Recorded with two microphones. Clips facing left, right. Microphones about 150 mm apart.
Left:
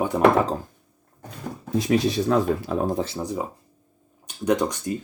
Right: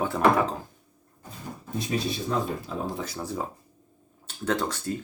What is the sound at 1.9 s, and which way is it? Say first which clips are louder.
Speech: left 8 dB; 75° left (ahead or behind).